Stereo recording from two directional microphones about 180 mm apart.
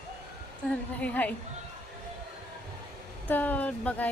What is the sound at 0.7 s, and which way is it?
Speech, 10° left (ahead or behind).